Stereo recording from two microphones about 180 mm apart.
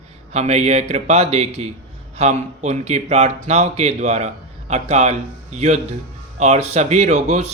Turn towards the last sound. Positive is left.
turn(degrees=-40)  # may be behind; listen again after turning